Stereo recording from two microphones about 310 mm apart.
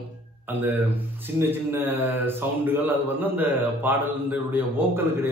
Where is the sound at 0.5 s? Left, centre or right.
Centre.